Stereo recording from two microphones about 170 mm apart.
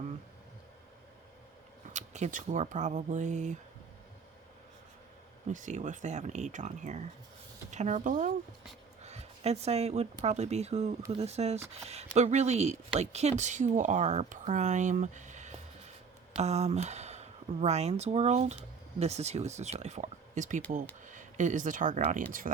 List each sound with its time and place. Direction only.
1.9 s speech: 45° right (ahead or behind)
5.5 s speech: 50° right (ahead or behind)
9.0 s a sound: 40° right (ahead or behind)
10.2 s speech: 40° right (ahead or behind)